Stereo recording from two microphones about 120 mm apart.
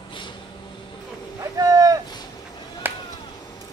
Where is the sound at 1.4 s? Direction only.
30° right (ahead or behind).